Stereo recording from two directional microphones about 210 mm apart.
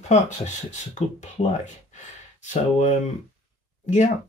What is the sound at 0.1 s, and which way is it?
Speech, 35° left (ahead or behind).